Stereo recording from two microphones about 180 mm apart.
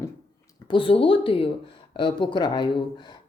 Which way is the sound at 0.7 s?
30° left (ahead or behind).